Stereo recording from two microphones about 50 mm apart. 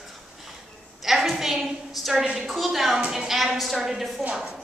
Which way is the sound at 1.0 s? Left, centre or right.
Centre.